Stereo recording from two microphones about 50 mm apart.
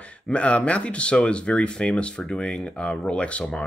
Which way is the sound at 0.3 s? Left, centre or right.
Left.